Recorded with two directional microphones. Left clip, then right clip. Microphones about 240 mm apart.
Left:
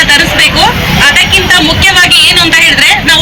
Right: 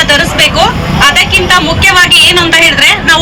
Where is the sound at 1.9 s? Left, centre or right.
Right.